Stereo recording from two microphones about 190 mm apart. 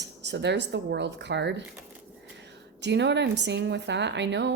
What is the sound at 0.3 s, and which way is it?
Speech, 65° right (ahead or behind).